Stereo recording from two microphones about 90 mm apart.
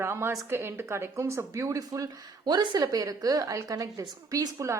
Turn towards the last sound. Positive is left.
turn(degrees=-40)  # may be behind; listen again after turning